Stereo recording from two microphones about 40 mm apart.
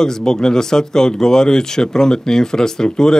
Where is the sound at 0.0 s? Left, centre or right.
Centre.